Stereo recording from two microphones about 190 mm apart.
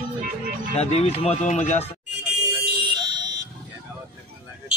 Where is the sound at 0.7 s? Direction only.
35° left (ahead or behind).